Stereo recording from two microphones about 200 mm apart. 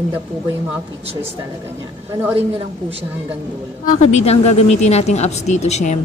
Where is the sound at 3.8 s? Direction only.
35° left (ahead or behind).